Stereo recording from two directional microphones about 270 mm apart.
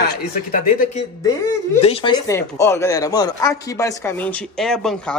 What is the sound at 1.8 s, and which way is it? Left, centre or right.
Speech, centre.